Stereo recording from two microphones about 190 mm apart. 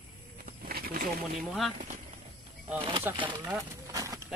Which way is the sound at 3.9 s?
20° right (ahead or behind).